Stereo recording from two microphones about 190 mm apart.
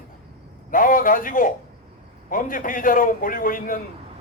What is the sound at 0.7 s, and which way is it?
A man's voice, 45° left (ahead or behind).